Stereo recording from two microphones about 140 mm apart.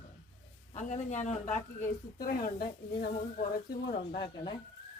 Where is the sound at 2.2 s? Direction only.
90° left.